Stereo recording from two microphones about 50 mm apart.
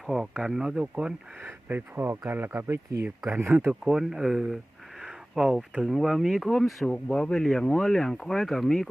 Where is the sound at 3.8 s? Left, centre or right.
Centre.